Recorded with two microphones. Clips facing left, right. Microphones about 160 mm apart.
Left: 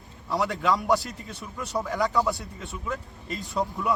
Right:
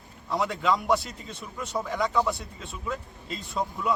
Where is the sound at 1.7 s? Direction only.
Centre (ahead or behind).